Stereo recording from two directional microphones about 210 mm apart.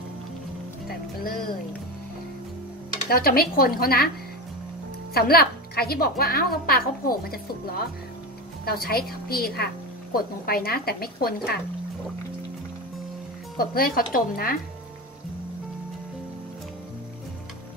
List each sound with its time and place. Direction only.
0.8 s speech: 45° left (ahead or behind)
3.1 s a woman's voice: 45° left (ahead or behind)
5.1 s a woman's voice: 45° left (ahead or behind)
13.6 s a woman's voice: 45° left (ahead or behind)